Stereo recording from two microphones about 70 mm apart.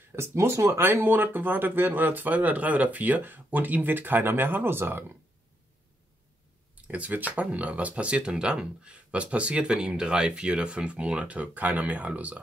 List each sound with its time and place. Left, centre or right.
0.3 s speech: right
6.7 s speech: right